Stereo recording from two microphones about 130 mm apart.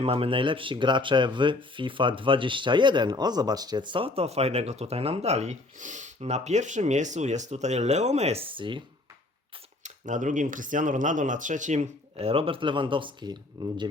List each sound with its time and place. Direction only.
0.0 s speech: 45° right (ahead or behind)
9.8 s speech: 75° right (ahead or behind); by 13.8 s 35° right (ahead or behind)